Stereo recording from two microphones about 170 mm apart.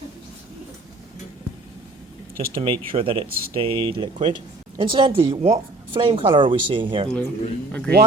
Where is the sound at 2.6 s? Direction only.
30° right (ahead or behind).